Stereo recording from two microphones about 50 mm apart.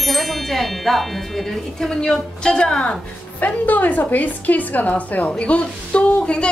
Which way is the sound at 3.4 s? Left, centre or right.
Left.